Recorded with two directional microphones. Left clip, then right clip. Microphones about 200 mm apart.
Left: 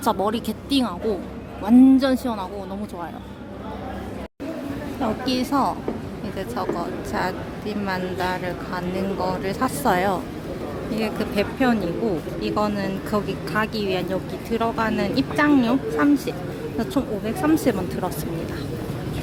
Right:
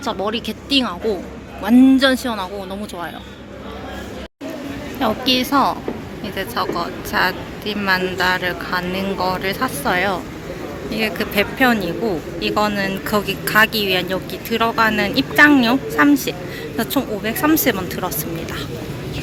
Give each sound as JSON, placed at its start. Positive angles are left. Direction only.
{"t": 0.0, "sound": "speech", "side_deg": 20}
{"t": 0.3, "sound": "speech", "side_deg": 10}
{"t": 5.0, "sound": "speech", "side_deg": 0}
{"t": 9.8, "sound": "speech", "side_deg": 15}
{"t": 10.9, "sound": "speech", "side_deg": 0}